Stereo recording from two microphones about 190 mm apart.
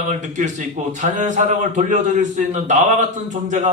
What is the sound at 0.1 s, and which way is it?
A man's voice, 40° right (ahead or behind).